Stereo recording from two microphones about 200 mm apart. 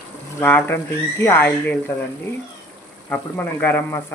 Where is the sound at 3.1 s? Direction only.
5° left (ahead or behind).